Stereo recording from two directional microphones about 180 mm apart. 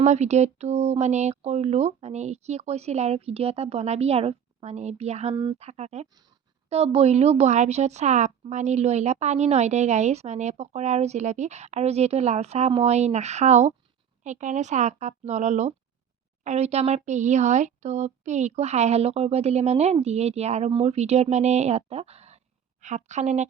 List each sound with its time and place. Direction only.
0.0 s a woman's voice: 40° right (ahead or behind)